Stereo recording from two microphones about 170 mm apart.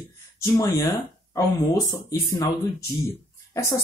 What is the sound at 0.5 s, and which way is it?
Speech, 25° left (ahead or behind).